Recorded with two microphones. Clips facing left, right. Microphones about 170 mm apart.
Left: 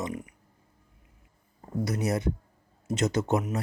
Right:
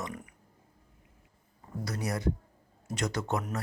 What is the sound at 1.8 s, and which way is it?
Speech, 20° left (ahead or behind).